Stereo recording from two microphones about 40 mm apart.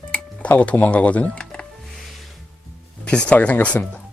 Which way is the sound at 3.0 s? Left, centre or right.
Left.